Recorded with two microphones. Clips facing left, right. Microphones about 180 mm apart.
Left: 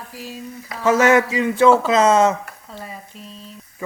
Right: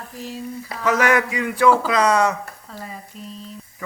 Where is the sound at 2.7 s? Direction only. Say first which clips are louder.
Left 2 dB; centre (ahead or behind).